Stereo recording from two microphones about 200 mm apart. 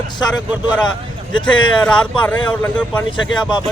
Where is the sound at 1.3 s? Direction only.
25° left (ahead or behind).